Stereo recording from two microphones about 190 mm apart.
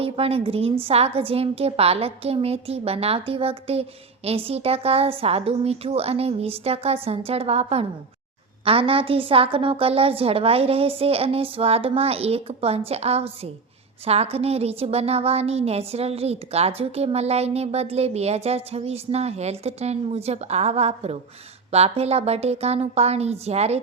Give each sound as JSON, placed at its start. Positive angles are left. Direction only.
{"t": 0.0, "sound": "a woman's voice", "side_deg": -30}